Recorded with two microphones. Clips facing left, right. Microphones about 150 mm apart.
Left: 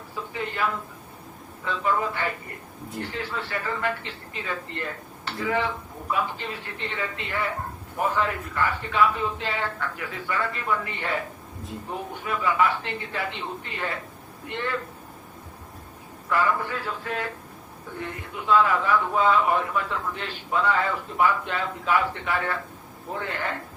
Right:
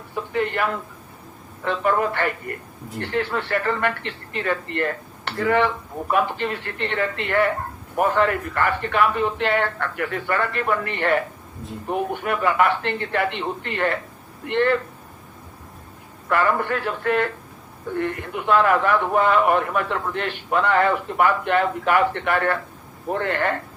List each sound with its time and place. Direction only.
0.1 s a man's voice: 65° right (ahead or behind)
16.3 s a man's voice: 65° right (ahead or behind)